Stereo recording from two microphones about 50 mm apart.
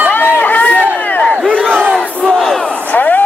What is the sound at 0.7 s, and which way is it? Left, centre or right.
Run, right.